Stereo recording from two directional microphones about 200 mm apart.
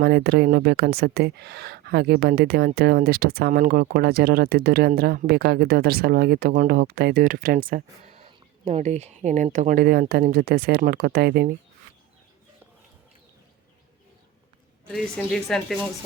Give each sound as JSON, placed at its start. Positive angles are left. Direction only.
{"t": 0.0, "sound": "speech", "side_deg": -55}
{"t": 8.2, "sound": "speech", "side_deg": -30}
{"t": 14.9, "sound": "a woman's voice", "side_deg": 0}